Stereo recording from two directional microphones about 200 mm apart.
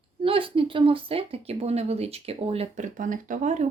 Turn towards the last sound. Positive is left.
turn(degrees=-35)  # may be behind; listen again after turning